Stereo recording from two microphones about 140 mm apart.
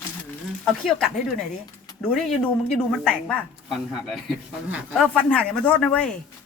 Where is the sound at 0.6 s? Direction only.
5° left (ahead or behind).